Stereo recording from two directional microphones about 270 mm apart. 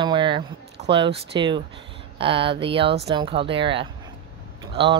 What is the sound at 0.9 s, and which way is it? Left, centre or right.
Speech, centre.